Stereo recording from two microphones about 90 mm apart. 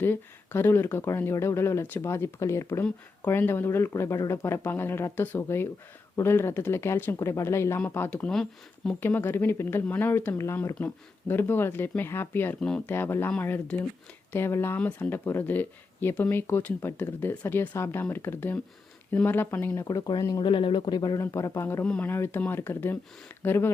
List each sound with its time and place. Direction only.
0.0 s speech: 25° left (ahead or behind)
8.3 s speech: 5° left (ahead or behind)
9.0 s speech: 25° left (ahead or behind)
12.5 s speech: 10° left (ahead or behind)
12.8 s speech: 25° left (ahead or behind)
14.8 s speech: 15° left (ahead or behind)
19.9 s speech: 45° left (ahead or behind)
20.4 s speech: 65° left (ahead or behind)
20.9 s speech: 50° left (ahead or behind)
21.2 s speech: 35° left (ahead or behind)